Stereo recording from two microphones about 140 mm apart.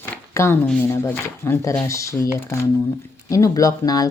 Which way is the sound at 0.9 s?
20° left (ahead or behind).